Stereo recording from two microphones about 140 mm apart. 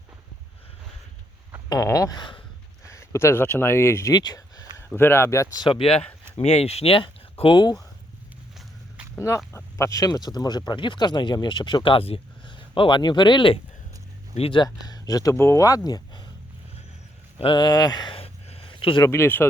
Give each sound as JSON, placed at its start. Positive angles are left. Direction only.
{"t": 1.7, "sound": "speech", "side_deg": 25}
{"t": 2.8, "sound": "speech", "side_deg": 20}
{"t": 4.9, "sound": "speech", "side_deg": 15}
{"t": 5.6, "sound": "speech", "side_deg": 40}
{"t": 9.1, "sound": "speech", "side_deg": 20}
{"t": 14.8, "sound": "speech", "side_deg": 25}
{"t": 17.3, "sound": "a sound", "side_deg": 35}
{"t": 19.0, "sound": "speech", "side_deg": 20}